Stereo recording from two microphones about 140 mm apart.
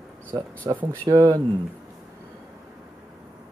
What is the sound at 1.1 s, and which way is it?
Speech, 25° right (ahead or behind).